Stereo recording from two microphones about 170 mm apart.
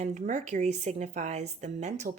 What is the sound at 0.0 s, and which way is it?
A woman's voice, 45° right (ahead or behind).